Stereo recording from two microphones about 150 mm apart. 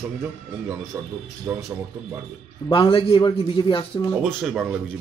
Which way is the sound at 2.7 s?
35° left (ahead or behind).